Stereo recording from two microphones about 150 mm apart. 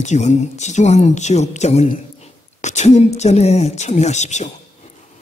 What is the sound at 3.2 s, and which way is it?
Speech, 45° left (ahead or behind).